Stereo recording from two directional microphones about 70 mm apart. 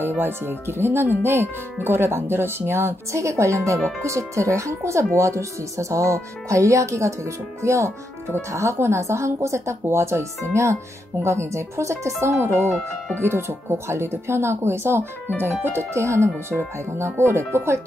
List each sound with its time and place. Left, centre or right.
0.2 s speech: right